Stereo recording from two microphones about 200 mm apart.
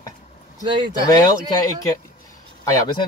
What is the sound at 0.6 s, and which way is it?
Speech, 25° right (ahead or behind).